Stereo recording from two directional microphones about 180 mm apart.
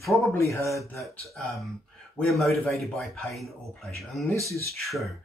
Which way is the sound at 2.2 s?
Centre (ahead or behind).